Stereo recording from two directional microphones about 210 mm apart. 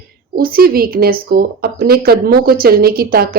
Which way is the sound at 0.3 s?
45° right (ahead or behind).